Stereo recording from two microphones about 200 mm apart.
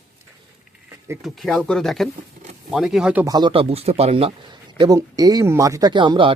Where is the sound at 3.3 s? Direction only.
20° right (ahead or behind).